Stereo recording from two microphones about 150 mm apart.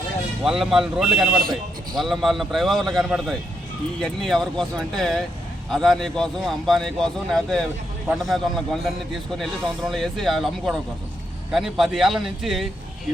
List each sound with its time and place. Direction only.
0.4 s speech: 5° right (ahead or behind)